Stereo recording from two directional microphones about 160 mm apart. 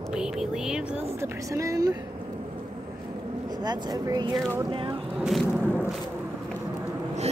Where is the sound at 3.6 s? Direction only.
25° right (ahead or behind).